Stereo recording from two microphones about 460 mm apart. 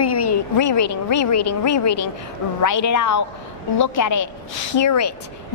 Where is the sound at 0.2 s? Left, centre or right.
Left.